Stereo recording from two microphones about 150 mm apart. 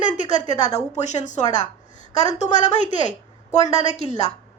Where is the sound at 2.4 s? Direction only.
50° left (ahead or behind).